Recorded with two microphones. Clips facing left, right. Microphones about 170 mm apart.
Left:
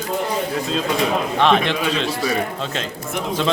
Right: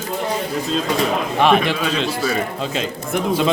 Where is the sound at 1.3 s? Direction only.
10° right (ahead or behind).